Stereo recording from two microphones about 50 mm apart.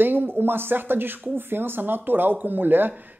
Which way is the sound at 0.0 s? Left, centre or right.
Right.